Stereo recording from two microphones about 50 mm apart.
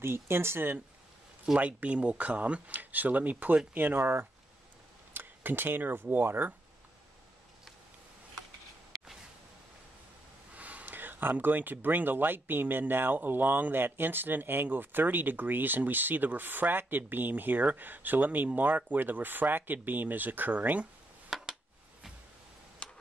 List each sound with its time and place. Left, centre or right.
0.0 s speech: right
1.6 s speech: right
8.9 s a sound: centre
10.5 s speech: right
21.3 s a sound: centre
22.8 s tick-tock: left